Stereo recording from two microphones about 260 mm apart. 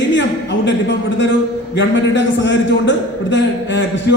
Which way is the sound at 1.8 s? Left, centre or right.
Left.